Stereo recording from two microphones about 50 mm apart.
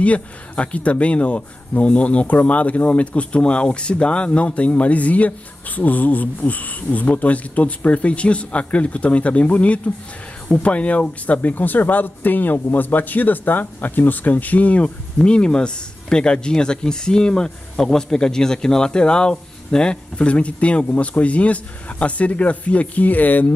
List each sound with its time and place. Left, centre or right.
0.0 s speech: left